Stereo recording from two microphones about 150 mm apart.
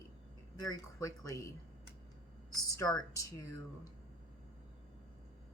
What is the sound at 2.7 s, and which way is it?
Speech, 25° left (ahead or behind).